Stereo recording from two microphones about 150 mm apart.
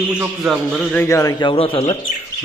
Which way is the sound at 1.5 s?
35° left (ahead or behind).